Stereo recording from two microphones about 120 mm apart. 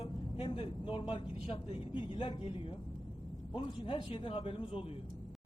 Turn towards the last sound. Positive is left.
turn(degrees=50)  # may be behind; listen again after turning